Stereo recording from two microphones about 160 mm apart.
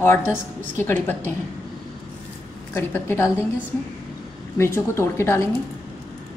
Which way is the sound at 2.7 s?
15° left (ahead or behind).